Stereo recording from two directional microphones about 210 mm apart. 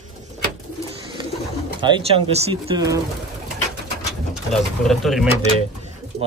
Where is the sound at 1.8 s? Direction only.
20° right (ahead or behind).